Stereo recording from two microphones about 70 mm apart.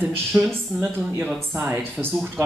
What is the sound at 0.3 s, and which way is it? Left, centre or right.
A woman's voice, right.